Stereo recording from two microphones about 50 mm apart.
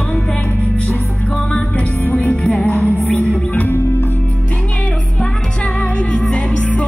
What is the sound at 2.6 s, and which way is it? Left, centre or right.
Music, left.